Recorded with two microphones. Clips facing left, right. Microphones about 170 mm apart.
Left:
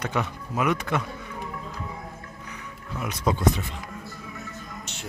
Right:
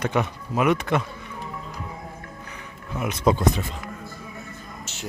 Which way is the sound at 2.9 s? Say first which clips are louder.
Right 5 dB; 20° right (ahead or behind).